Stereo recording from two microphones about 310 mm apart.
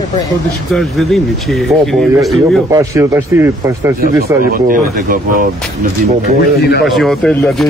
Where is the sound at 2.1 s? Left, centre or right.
Centre.